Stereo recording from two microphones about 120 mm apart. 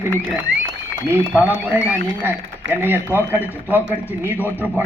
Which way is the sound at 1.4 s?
15° right (ahead or behind).